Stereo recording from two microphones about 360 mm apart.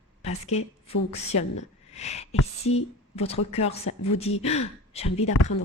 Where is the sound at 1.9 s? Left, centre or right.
Centre.